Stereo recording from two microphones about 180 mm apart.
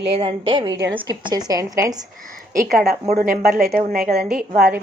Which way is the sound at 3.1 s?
55° right (ahead or behind).